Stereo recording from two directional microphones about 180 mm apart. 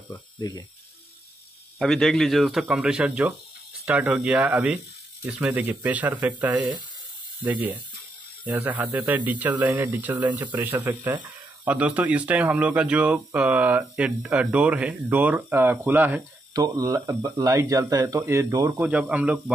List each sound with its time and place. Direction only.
0.4 s speech: 20° left (ahead or behind)
1.8 s speech: centre (ahead or behind)
16.5 s speech: 20° right (ahead or behind)